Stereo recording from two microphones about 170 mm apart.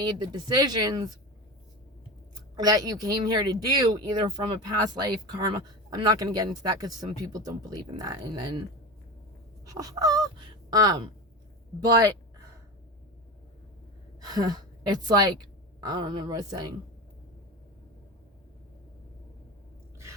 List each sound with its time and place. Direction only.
0.0 s speech: 25° right (ahead or behind)
2.6 s speech: 20° right (ahead or behind)
9.6 s speech: 20° right (ahead or behind)
14.3 s speech: 25° right (ahead or behind)